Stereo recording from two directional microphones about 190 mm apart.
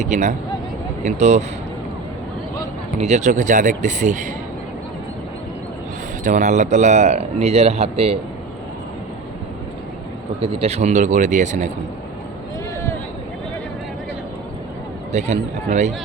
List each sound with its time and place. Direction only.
0.0 s a man's voice: 40° right (ahead or behind)
3.0 s a man's voice: 35° right (ahead or behind)
6.2 s a man's voice: 40° right (ahead or behind)
10.4 s a man's voice: 35° right (ahead or behind)
15.1 s a man's voice: 35° right (ahead or behind)